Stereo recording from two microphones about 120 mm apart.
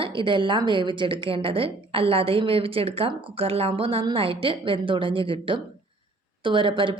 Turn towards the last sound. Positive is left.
turn(degrees=-45)  # may be behind; listen again after turning